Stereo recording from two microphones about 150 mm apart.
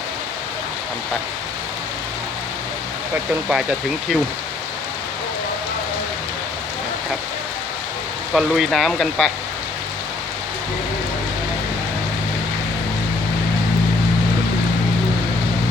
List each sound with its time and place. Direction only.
3.5 s speech: 5° right (ahead or behind)
8.3 s speech: 5° right (ahead or behind)